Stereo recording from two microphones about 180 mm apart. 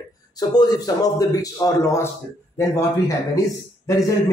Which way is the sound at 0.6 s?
20° left (ahead or behind).